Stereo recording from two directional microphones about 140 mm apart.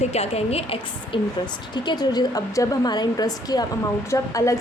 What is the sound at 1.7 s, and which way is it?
A woman's voice, 30° left (ahead or behind).